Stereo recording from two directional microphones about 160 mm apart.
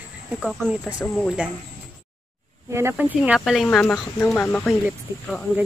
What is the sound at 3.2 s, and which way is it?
Speech, 5° right (ahead or behind).